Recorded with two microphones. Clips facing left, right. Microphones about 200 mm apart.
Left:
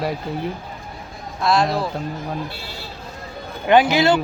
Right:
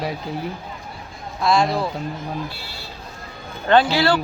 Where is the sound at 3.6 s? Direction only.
15° left (ahead or behind).